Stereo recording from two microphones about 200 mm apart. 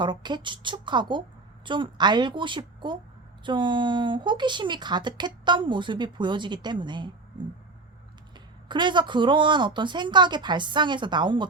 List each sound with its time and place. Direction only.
0.0 s speech: 25° right (ahead or behind)
8.7 s speech: 25° right (ahead or behind)